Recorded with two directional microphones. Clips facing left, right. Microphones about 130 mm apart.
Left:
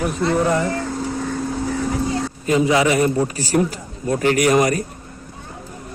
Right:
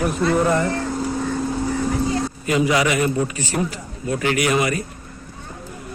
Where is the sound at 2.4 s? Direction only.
30° left (ahead or behind).